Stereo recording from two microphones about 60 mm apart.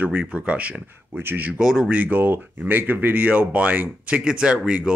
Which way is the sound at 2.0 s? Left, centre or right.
Right.